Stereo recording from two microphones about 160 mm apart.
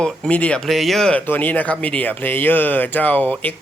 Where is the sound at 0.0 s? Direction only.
5° left (ahead or behind).